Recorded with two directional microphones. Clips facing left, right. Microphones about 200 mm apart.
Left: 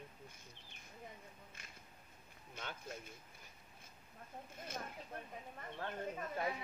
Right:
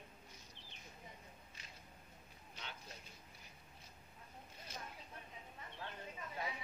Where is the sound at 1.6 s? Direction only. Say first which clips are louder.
Left 1 dB; 50° left (ahead or behind).